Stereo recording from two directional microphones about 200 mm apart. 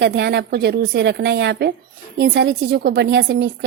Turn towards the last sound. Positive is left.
turn(degrees=-60)  # may be behind; listen again after turning